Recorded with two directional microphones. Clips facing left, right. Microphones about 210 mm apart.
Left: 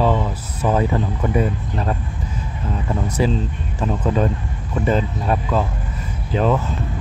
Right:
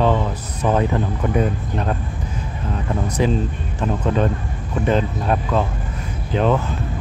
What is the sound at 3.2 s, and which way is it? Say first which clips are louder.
Speech: right 1 dB; centre (ahead or behind).